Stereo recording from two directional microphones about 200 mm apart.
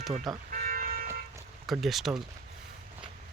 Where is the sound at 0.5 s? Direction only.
45° right (ahead or behind).